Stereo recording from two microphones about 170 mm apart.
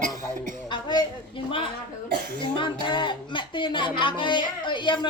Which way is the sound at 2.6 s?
30° left (ahead or behind).